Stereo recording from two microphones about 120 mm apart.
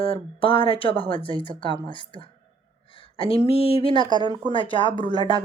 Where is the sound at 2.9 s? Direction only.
50° left (ahead or behind).